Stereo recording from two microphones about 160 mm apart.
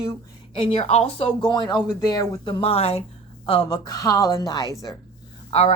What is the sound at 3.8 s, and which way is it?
A woman's voice, 20° left (ahead or behind).